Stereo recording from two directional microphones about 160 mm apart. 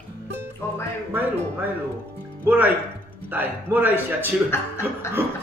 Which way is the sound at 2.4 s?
10° right (ahead or behind).